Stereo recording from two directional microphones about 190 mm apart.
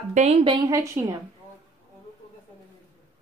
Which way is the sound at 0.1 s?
35° right (ahead or behind).